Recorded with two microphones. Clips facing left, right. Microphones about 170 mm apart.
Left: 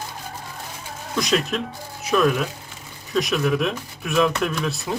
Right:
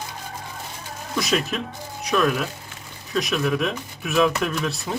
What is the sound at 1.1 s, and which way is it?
Speech, centre (ahead or behind).